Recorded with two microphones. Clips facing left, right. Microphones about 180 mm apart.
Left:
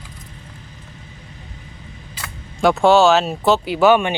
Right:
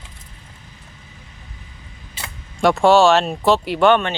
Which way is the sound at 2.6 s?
Centre (ahead or behind).